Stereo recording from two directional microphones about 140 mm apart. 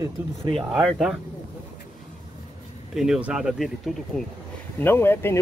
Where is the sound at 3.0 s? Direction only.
5° right (ahead or behind).